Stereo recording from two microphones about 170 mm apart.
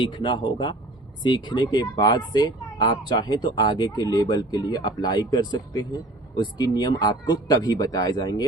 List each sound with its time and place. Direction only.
0.0 s speech: 30° left (ahead or behind)